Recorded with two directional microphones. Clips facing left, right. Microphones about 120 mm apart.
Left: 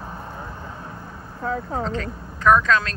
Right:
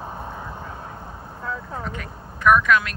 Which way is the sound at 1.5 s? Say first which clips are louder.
Left 6 dB; 90° left.